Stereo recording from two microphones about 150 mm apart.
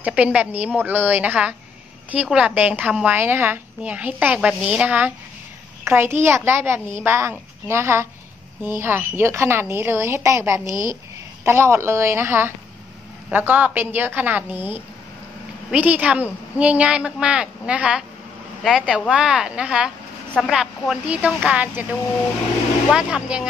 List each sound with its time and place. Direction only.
0.0 s a woman's voice: 10° right (ahead or behind)
22.8 s speech: 5° right (ahead or behind)